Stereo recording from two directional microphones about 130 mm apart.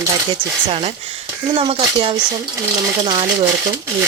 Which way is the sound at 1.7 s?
40° right (ahead or behind).